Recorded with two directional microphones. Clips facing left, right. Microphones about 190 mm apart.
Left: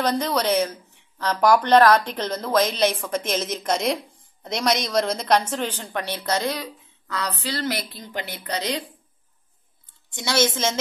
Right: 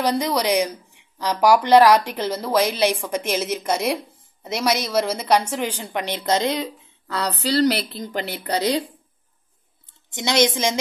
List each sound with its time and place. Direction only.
0.0 s speech: 10° right (ahead or behind); by 8.0 s 25° right (ahead or behind)
8.0 s a woman's voice: 40° right (ahead or behind)
10.0 s speech: 20° right (ahead or behind)